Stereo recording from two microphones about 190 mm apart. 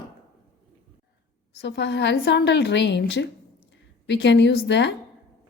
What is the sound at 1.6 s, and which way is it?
A woman's voice, 65° left (ahead or behind).